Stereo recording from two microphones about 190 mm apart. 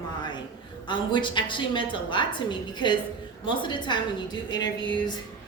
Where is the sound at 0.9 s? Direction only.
25° left (ahead or behind).